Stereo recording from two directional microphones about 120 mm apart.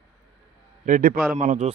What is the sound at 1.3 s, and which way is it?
Speech, 80° right.